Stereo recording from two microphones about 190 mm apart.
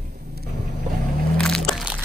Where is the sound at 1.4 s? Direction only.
5° left (ahead or behind).